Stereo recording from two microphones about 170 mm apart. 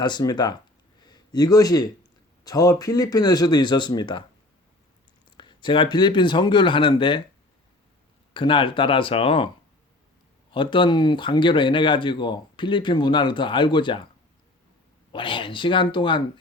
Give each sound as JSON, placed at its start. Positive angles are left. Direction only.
{"t": 0.0, "sound": "speech", "side_deg": 25}
{"t": 5.4, "sound": "speech", "side_deg": 25}
{"t": 8.3, "sound": "speech", "side_deg": 30}
{"t": 10.5, "sound": "speech", "side_deg": 30}
{"t": 15.1, "sound": "speech", "side_deg": 30}